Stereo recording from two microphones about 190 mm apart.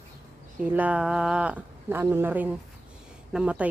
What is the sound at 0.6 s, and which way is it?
Speech, 10° right (ahead or behind).